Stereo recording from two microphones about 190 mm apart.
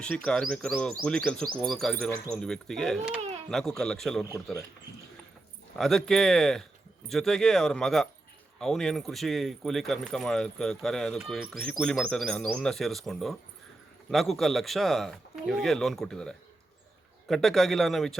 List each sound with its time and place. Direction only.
0.0 s speech: 5° left (ahead or behind)
3.2 s a sound: 35° right (ahead or behind)
3.5 s speech: centre (ahead or behind)
5.7 s speech: centre (ahead or behind)